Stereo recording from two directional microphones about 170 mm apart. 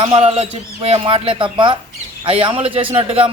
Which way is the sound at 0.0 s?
35° right (ahead or behind).